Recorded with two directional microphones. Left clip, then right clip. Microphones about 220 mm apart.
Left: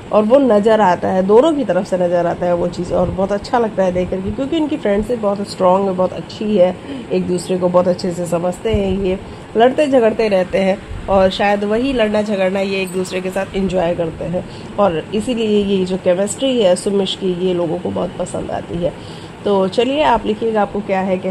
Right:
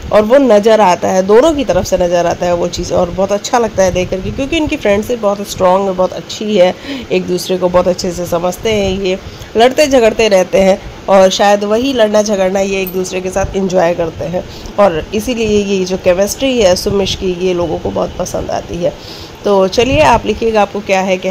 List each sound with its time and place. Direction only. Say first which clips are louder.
0.1 s speech: right 4 dB; 20° right (ahead or behind)